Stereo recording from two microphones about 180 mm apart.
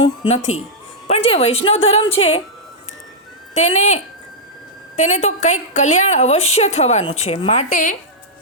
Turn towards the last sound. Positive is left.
turn(degrees=45)  # may be behind; listen again after turning